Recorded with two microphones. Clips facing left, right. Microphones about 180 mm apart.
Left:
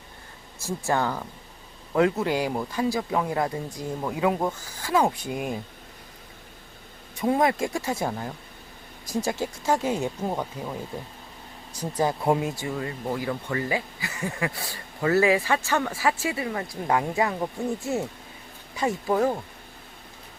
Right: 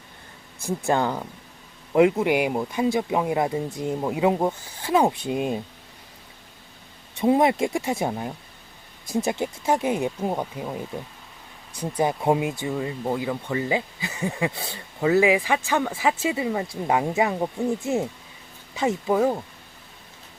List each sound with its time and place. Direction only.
0.9 s speech: 15° right (ahead or behind)
7.2 s speech: 25° right (ahead or behind)
11.8 s speech: 20° right (ahead or behind)